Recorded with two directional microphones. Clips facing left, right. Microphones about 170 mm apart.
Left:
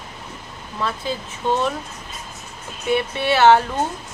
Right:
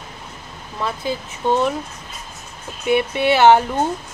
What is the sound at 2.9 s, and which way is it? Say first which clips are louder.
Speech: right 3 dB; 15° right (ahead or behind).